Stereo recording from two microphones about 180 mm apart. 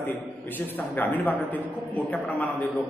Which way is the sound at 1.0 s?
10° left (ahead or behind).